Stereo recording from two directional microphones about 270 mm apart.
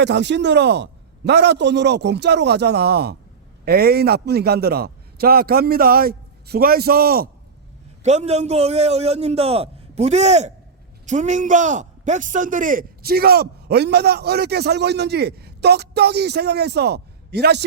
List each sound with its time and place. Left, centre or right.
0.0 s a man's voice: right